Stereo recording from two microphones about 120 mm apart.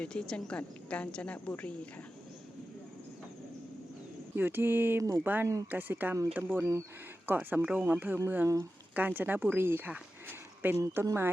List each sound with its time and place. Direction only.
0.0 s a woman's voice: 5° left (ahead or behind)
4.4 s speech: 15° right (ahead or behind)